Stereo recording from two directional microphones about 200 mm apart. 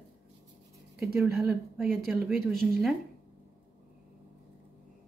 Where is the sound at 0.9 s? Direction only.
Centre (ahead or behind).